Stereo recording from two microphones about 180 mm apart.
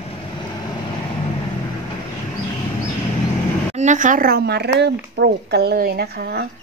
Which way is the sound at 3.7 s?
40° right (ahead or behind).